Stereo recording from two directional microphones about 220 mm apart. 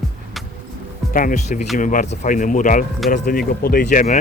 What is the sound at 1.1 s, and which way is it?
Speech, 35° left (ahead or behind).